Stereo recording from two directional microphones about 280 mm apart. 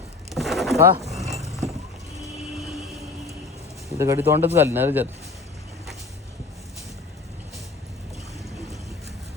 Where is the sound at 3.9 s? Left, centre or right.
Centre.